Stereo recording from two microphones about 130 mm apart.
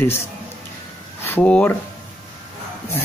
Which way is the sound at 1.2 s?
10° left (ahead or behind).